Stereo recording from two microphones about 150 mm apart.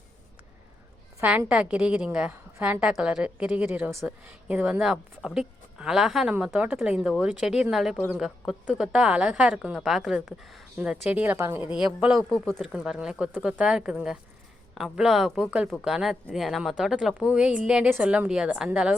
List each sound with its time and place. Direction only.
1.2 s a woman's voice: 10° right (ahead or behind)
11.8 s a woman's voice: 5° right (ahead or behind)